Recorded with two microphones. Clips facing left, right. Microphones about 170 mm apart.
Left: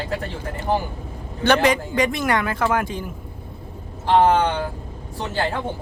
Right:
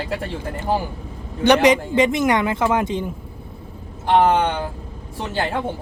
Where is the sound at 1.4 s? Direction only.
20° right (ahead or behind).